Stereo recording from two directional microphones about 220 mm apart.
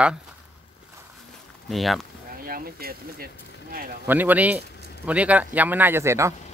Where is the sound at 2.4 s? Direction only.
40° right (ahead or behind).